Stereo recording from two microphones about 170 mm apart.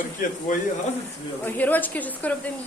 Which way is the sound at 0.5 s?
50° left (ahead or behind).